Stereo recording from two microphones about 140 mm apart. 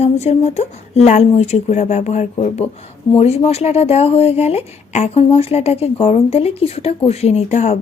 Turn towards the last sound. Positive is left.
turn(degrees=50)  # may be behind; listen again after turning